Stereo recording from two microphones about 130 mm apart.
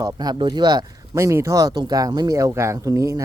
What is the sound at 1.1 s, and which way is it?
Speech, 20° right (ahead or behind).